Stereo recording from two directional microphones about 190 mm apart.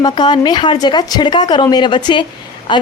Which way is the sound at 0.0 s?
20° left (ahead or behind).